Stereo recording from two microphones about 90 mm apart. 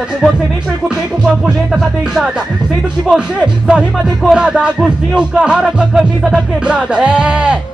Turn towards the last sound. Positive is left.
turn(degrees=-10)  # may be behind; listen again after turning